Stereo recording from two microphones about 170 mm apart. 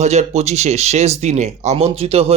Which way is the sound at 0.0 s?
40° right (ahead or behind).